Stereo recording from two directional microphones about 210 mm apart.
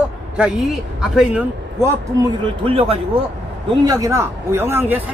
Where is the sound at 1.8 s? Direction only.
25° right (ahead or behind).